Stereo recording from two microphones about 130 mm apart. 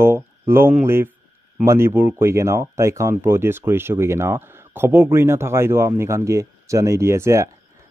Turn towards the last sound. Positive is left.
turn(degrees=-20)  # may be behind; listen again after turning